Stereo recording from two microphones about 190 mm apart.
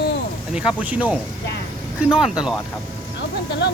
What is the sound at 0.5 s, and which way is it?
Speech, 5° right (ahead or behind).